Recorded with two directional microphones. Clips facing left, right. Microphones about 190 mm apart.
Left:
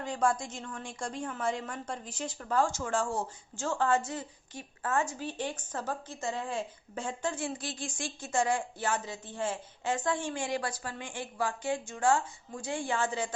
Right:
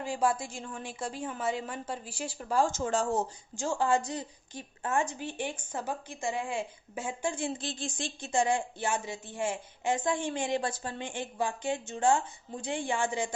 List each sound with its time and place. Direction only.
0.0 s a woman's voice: 10° right (ahead or behind)